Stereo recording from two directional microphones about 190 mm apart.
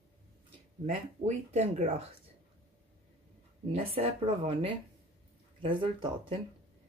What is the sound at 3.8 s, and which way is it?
Speech, 30° right (ahead or behind).